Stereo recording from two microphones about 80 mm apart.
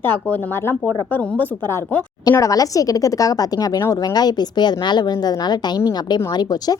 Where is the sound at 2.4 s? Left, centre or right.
Left.